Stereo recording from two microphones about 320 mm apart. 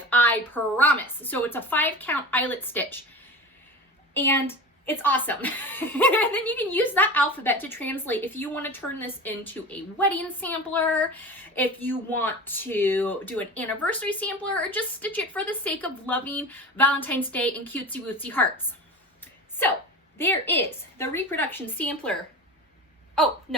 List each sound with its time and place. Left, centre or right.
0.1 s speech: centre
4.1 s speech: centre
19.2 s a sound: centre
20.1 s a woman's voice: centre
23.1 s speech: centre